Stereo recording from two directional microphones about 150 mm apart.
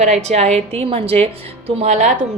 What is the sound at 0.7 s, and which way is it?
Speech, 40° right (ahead or behind).